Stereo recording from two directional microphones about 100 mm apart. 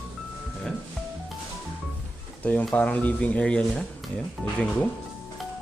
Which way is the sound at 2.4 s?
15° left (ahead or behind).